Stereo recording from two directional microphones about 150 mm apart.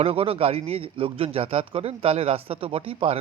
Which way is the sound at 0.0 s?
40° right (ahead or behind).